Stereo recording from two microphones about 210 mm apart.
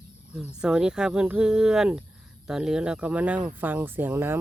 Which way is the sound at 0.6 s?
5° right (ahead or behind).